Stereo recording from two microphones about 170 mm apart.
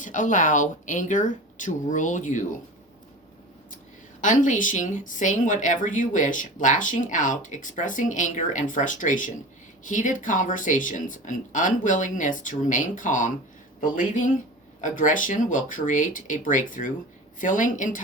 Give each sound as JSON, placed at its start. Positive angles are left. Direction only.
{"t": 0.0, "sound": "speech", "side_deg": 50}
{"t": 4.2, "sound": "speech", "side_deg": 50}